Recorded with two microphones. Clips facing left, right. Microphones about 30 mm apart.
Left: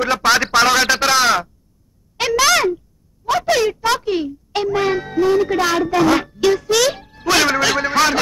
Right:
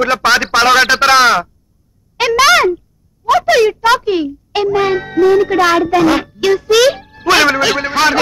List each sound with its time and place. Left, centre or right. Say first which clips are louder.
0.2 s speech: even; right